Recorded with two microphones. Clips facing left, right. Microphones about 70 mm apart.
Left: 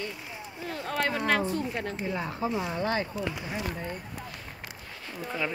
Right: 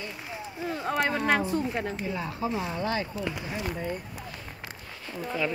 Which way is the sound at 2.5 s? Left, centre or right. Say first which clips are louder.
Even; centre.